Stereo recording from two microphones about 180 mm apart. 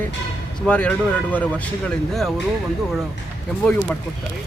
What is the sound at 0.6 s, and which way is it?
A man's voice, 5° left (ahead or behind).